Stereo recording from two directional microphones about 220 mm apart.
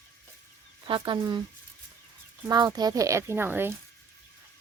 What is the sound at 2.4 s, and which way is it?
A woman's voice, 20° right (ahead or behind).